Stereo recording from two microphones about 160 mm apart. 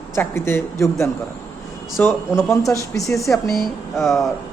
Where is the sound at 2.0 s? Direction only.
10° left (ahead or behind).